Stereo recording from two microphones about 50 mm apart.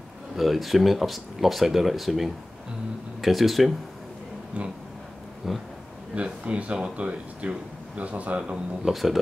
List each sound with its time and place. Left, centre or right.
0.4 s speech: centre
4.5 s speech: right
5.4 s speech: centre
6.2 s speech: right
8.9 s speech: centre